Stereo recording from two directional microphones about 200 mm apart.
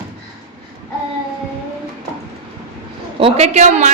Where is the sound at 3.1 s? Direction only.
30° right (ahead or behind).